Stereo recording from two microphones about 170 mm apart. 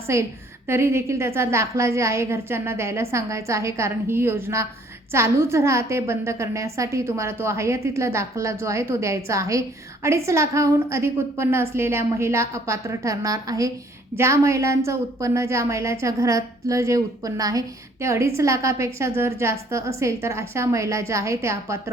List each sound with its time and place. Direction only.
0.1 s a woman's voice: 15° right (ahead or behind)